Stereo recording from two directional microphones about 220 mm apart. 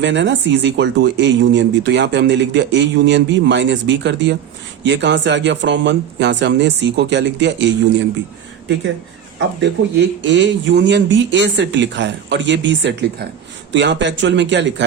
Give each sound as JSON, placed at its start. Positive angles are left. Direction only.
{"t": 0.0, "sound": "speech", "side_deg": -55}
{"t": 9.6, "sound": "speech", "side_deg": -55}